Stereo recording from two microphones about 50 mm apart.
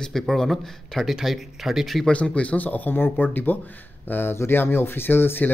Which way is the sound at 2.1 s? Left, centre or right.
Left.